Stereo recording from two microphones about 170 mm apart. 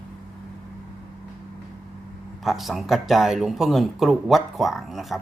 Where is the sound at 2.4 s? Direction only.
Centre (ahead or behind).